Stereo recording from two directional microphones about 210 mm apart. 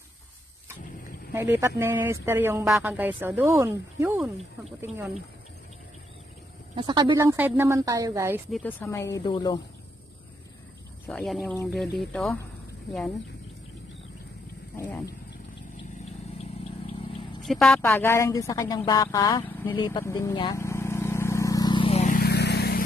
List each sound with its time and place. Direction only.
1.3 s speech: 10° right (ahead or behind)
6.7 s speech: 25° right (ahead or behind)
8.5 s a woman's voice: 5° left (ahead or behind); by 9.6 s 20° left (ahead or behind)
11.1 s speech: centre (ahead or behind)
14.9 s a woman's voice: 10° left (ahead or behind)
17.5 s a woman's voice: 5° left (ahead or behind)
19.4 s a sound: 10° left (ahead or behind)
19.7 s a woman's voice: 20° left (ahead or behind)
20.5 s vehicle: 15° left (ahead or behind); by 22.8 s 50° left (ahead or behind)